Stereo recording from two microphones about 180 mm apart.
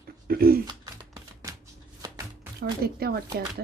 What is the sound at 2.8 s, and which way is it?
Speech, 60° right (ahead or behind).